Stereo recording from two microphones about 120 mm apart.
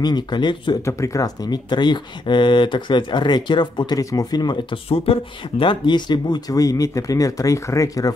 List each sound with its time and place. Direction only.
0.0 s speech: 35° left (ahead or behind)
0.8 s speech: 25° left (ahead or behind)
4.8 s speech: 55° left (ahead or behind); by 8.1 s 25° left (ahead or behind)